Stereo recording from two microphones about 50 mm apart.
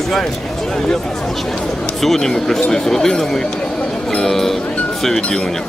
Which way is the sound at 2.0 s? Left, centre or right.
Centre.